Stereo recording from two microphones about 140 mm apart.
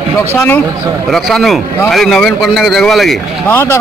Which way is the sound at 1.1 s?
Centre (ahead or behind).